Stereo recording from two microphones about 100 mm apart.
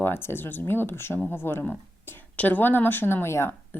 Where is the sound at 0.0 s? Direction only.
20° left (ahead or behind).